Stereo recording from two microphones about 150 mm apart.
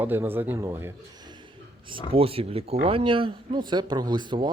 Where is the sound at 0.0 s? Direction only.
15° right (ahead or behind).